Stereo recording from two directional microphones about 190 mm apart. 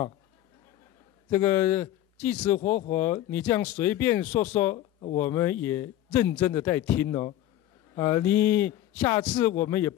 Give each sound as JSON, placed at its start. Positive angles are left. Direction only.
{"t": 1.3, "sound": "a man's voice", "side_deg": 10}
{"t": 4.7, "sound": "speech", "side_deg": 35}
{"t": 5.2, "sound": "a man's voice", "side_deg": 10}